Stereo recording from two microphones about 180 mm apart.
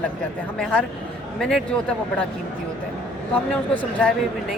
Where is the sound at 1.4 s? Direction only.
Centre (ahead or behind).